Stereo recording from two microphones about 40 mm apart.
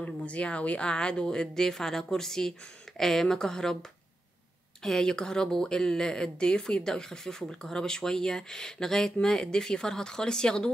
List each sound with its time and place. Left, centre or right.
0.0 s speech: left; by 3.7 s centre
4.8 s speech: centre